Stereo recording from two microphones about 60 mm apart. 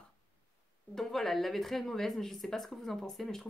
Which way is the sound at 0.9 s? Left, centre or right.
Centre.